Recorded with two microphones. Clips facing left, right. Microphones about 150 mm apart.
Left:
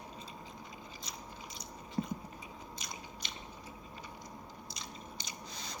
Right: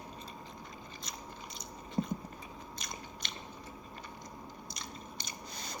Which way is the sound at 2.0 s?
20° right (ahead or behind).